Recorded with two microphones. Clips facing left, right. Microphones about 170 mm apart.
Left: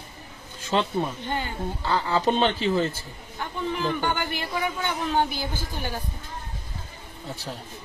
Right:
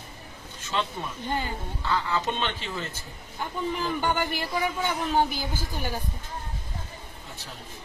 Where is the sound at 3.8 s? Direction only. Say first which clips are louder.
Left 1 dB; 5° right (ahead or behind).